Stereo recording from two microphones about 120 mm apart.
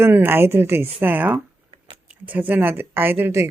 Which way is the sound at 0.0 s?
20° right (ahead or behind).